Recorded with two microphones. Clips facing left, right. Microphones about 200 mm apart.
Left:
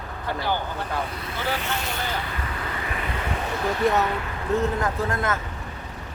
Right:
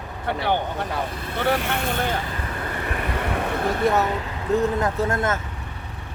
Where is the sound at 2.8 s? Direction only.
50° right (ahead or behind).